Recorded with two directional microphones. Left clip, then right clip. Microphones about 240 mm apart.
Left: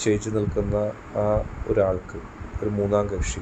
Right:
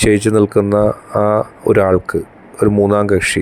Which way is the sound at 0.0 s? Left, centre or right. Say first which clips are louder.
Right 12 dB; right.